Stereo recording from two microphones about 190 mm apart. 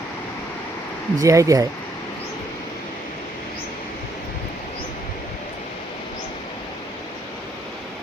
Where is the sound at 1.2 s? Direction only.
15° right (ahead or behind).